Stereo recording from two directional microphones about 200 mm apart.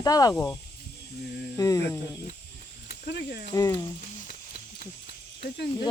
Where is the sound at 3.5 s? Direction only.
15° left (ahead or behind).